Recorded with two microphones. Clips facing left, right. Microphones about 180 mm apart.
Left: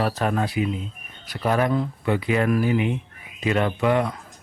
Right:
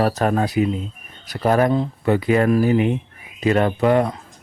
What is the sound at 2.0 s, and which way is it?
Speech, 40° right (ahead or behind).